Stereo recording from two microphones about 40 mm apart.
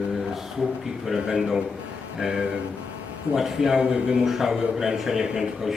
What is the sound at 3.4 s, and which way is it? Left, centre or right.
Speech, centre.